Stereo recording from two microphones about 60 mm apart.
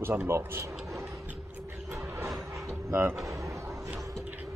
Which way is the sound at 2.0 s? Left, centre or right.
Right.